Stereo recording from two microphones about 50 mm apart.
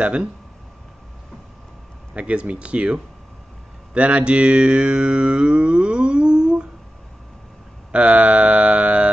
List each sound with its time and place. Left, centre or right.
0.0 s speech: right
2.1 s speech: right
7.9 s a sound: right